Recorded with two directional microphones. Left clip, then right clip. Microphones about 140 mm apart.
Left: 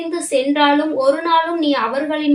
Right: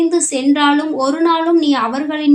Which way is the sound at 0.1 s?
40° right (ahead or behind).